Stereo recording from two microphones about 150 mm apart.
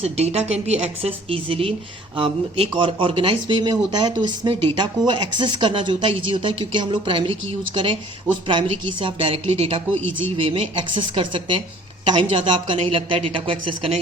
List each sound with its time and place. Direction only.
0.0 s a woman's voice: 45° right (ahead or behind)